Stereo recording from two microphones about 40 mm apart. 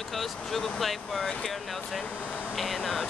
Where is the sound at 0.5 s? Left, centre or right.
Left.